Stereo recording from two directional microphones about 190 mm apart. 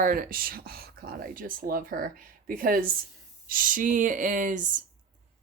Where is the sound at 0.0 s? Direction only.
50° right (ahead or behind).